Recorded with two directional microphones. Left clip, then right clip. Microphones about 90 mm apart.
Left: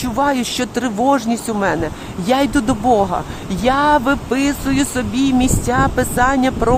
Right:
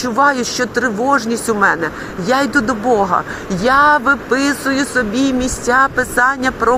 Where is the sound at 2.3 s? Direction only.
80° left.